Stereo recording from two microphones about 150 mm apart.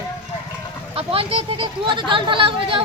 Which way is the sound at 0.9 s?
40° right (ahead or behind).